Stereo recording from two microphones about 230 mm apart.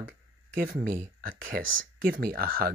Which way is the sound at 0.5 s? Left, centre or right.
Right.